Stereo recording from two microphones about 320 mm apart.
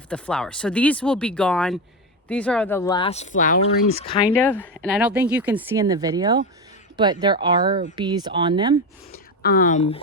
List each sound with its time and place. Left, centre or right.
0.1 s speech: centre
4.4 s speech: centre
9.4 s speech: left